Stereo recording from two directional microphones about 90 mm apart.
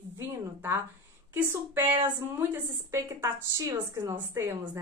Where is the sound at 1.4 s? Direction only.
25° right (ahead or behind).